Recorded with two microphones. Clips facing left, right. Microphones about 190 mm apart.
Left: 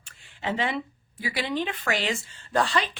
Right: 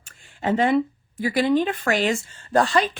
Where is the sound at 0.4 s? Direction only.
45° right (ahead or behind).